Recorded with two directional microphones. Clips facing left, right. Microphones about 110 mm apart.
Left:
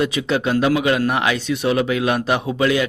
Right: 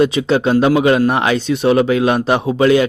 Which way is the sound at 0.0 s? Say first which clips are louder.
Right 6 dB; 30° right (ahead or behind).